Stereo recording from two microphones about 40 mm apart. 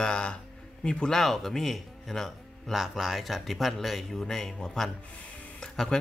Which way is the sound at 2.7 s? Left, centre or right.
Centre.